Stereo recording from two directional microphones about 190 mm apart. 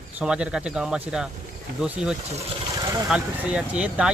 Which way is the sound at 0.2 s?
5° right (ahead or behind).